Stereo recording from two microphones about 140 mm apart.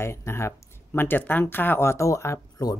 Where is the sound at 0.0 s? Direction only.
20° left (ahead or behind).